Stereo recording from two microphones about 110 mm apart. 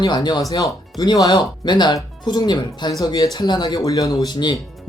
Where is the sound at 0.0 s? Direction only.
40° left (ahead or behind).